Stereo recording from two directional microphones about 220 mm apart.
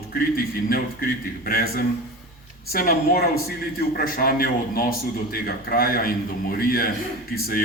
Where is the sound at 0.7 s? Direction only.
40° left (ahead or behind).